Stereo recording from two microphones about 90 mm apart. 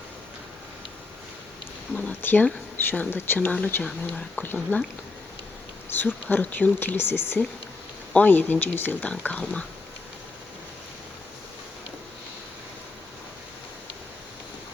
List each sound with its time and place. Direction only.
2.0 s speech: 20° left (ahead or behind)
5.9 s speech: 20° left (ahead or behind)